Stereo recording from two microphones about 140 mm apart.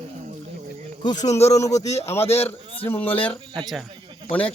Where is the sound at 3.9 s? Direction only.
35° right (ahead or behind).